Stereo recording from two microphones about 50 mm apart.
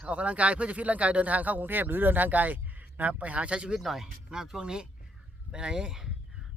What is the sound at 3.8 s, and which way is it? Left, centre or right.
A man's voice, centre.